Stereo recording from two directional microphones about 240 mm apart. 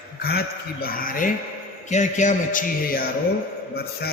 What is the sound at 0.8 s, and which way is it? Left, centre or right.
Speech, left.